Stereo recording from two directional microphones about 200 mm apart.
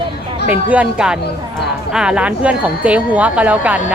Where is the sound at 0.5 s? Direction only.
5° right (ahead or behind).